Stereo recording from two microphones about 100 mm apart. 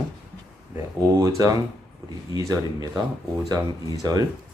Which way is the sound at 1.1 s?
35° right (ahead or behind).